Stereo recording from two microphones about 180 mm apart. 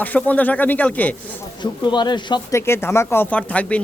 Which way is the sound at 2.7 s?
15° left (ahead or behind).